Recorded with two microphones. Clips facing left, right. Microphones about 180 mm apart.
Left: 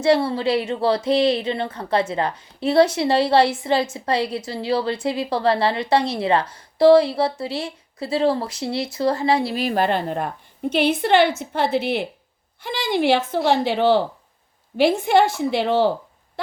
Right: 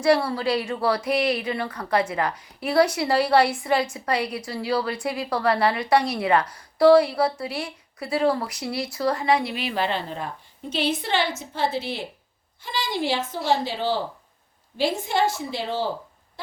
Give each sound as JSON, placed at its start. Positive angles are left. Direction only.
{"t": 0.0, "sound": "a woman's voice", "side_deg": 25}